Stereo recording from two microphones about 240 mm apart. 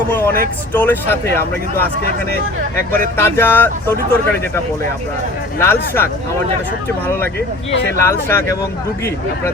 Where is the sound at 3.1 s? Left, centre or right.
Centre.